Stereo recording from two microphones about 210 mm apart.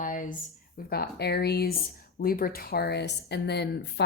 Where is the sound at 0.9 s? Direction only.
45° left (ahead or behind).